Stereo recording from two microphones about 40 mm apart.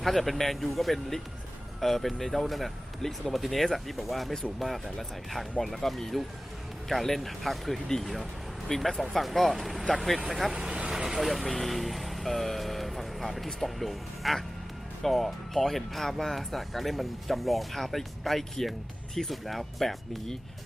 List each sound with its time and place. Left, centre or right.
0.0 s speech: centre
10.5 s vehicle: centre
11.0 s speech: centre